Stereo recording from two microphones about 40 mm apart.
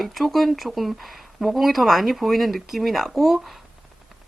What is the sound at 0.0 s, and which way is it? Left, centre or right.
Speech, centre.